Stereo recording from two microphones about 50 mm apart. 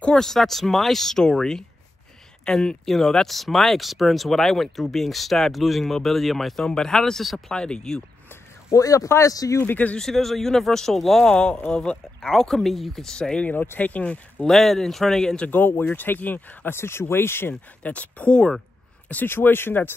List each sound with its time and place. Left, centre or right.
0.1 s speech: centre
7.2 s speech: centre
7.5 s speech: centre
8.6 s speech: left
9.6 s speech: left
9.9 s speech: centre
11.3 s speech: left
12.3 s speech: centre
13.7 s speech: left
14.4 s speech: centre
15.5 s speech: left
16.7 s speech: left
17.8 s speech: left
19.2 s speech: left